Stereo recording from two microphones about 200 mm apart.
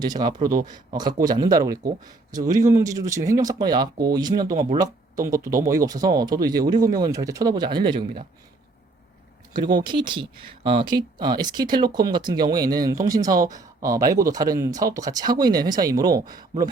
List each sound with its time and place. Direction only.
0.0 s speech: 20° right (ahead or behind)
9.5 s speech: 20° right (ahead or behind)